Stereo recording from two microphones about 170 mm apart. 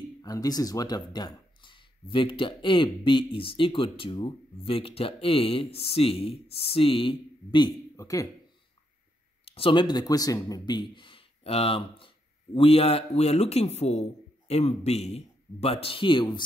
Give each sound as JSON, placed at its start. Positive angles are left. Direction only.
{"t": 0.2, "sound": "speech", "side_deg": 20}
{"t": 9.4, "sound": "speech", "side_deg": 35}